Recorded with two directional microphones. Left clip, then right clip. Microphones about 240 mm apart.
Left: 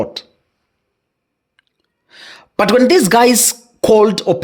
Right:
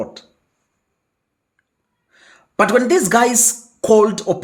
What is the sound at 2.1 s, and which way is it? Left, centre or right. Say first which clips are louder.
A woman's voice: left 11 dB; left.